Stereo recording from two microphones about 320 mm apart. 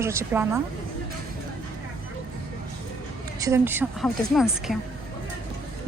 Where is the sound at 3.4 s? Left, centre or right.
Centre.